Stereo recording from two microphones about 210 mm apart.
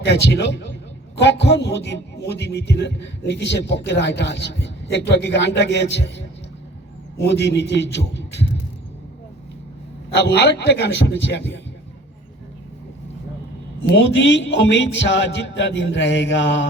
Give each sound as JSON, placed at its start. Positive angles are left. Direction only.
{"t": 0.0, "sound": "a man's voice", "side_deg": 55}
{"t": 10.2, "sound": "a man's voice", "side_deg": 55}
{"t": 13.8, "sound": "a man's voice", "side_deg": 60}